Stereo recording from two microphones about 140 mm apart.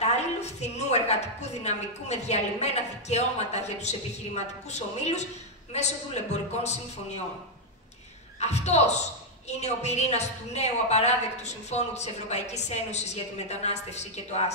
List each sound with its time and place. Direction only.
0.0 s a woman's voice: 50° left (ahead or behind)
8.4 s a woman's voice: 50° left (ahead or behind)